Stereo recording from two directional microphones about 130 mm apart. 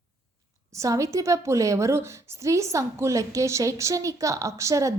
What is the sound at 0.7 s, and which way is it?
A woman's voice, 25° right (ahead or behind).